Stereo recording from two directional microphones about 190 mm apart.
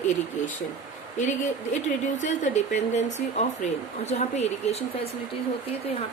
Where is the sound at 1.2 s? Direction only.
40° left (ahead or behind).